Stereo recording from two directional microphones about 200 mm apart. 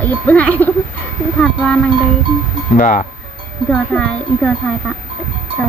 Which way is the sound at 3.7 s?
5° left (ahead or behind).